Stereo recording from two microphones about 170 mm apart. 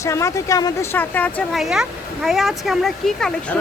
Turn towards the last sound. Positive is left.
turn(degrees=5)  # may be behind; listen again after turning